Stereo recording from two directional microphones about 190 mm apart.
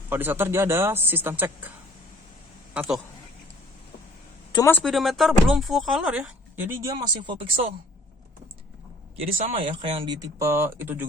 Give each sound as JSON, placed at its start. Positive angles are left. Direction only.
{"t": 0.1, "sound": "speech", "side_deg": -10}
{"t": 2.7, "sound": "speech", "side_deg": 0}
{"t": 4.5, "sound": "speech", "side_deg": 15}
{"t": 4.8, "sound": "speech", "side_deg": 0}
{"t": 9.2, "sound": "speech", "side_deg": -30}